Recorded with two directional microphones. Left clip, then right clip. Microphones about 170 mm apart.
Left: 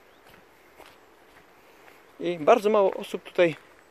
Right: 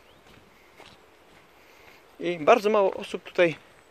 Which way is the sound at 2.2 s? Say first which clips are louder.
Even; 5° left (ahead or behind).